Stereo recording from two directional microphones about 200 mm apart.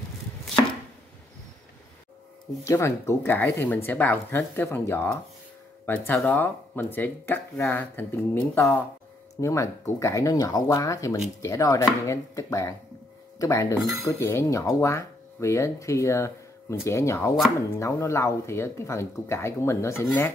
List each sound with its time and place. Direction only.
2.6 s speech: 15° left (ahead or behind)